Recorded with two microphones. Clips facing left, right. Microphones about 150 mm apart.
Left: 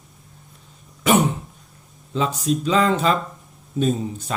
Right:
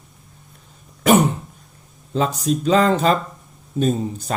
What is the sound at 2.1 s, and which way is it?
Speech, 40° right (ahead or behind).